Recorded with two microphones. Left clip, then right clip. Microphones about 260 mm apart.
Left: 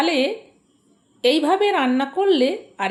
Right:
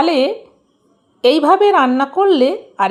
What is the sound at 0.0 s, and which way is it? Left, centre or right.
A woman's voice, right.